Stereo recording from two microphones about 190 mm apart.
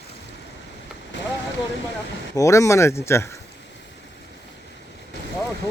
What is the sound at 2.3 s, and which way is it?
Speech, 15° left (ahead or behind).